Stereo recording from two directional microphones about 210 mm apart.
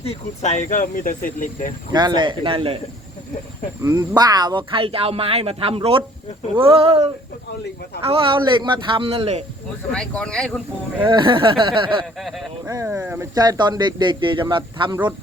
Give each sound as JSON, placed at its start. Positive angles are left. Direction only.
{"t": 0.1, "sound": "speech", "side_deg": 30}
{"t": 1.9, "sound": "speech", "side_deg": -20}
{"t": 3.8, "sound": "speech", "side_deg": -20}
{"t": 9.9, "sound": "speech", "side_deg": 5}
{"t": 10.9, "sound": "speech", "side_deg": -15}
{"t": 12.2, "sound": "speech", "side_deg": 0}
{"t": 12.6, "sound": "speech", "side_deg": -15}